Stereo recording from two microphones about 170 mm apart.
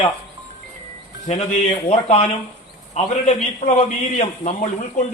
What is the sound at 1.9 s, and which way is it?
A man's voice, 40° left (ahead or behind).